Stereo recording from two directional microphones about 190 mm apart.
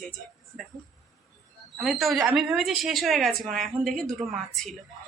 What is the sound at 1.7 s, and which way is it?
A woman's voice, centre (ahead or behind).